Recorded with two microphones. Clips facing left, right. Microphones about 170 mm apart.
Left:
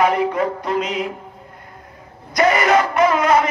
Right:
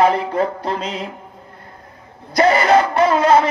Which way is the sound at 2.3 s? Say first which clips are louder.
Right 2 dB; 30° right (ahead or behind).